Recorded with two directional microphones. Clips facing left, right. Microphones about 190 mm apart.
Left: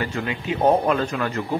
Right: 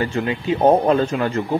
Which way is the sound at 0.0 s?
30° right (ahead or behind).